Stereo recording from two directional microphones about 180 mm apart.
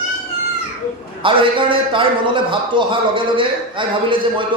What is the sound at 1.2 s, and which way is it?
A man's voice, 30° right (ahead or behind).